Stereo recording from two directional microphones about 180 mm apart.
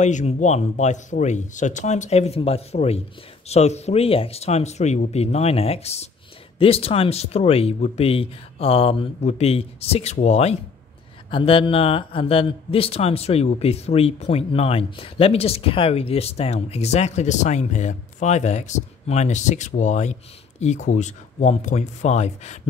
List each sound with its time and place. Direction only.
0.0 s speech: 40° left (ahead or behind)